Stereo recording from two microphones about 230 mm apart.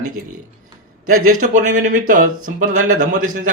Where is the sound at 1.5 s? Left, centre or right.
Right.